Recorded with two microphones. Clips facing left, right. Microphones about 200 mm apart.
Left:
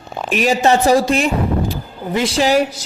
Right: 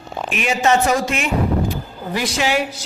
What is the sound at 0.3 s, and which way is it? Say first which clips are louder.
Speech: left 3 dB; 35° left (ahead or behind).